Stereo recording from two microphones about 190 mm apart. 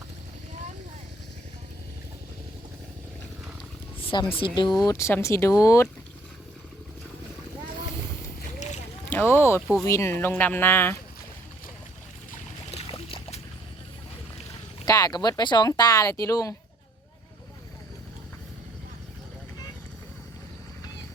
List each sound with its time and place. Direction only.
4.1 s speech: 25° left (ahead or behind)
4.9 s speech: 15° left (ahead or behind)
8.5 s boat: 40° left (ahead or behind)
9.0 s a sound: 10° left (ahead or behind)
9.8 s speech: 15° left (ahead or behind)
12.9 s boat: 25° left (ahead or behind)
14.8 s speech: 20° left (ahead or behind)